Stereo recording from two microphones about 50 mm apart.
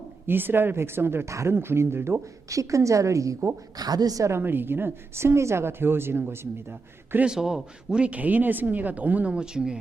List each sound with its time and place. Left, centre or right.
0.3 s speech: right
1.3 s a woman's voice: right
1.5 s speech: right
2.5 s a woman's voice: right
4.2 s speech: right
4.4 s speech: right
7.3 s speech: centre; by 9.3 s right
9.3 s speech: centre